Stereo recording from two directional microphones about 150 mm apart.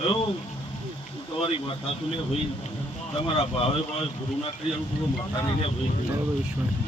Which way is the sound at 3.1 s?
40° left (ahead or behind).